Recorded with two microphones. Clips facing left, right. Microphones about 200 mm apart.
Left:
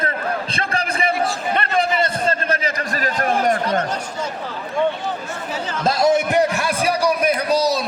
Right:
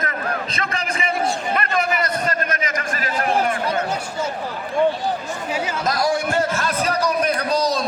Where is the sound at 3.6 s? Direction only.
10° right (ahead or behind).